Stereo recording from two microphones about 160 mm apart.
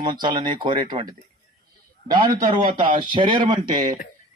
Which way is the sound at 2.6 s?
55° right (ahead or behind).